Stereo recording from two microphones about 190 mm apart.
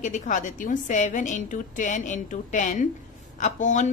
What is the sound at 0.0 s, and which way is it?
A woman's voice, 40° left (ahead or behind).